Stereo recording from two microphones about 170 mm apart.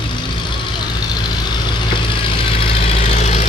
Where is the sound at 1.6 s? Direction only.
30° left (ahead or behind).